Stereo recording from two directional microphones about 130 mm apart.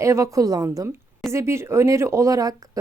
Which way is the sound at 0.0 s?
25° right (ahead or behind).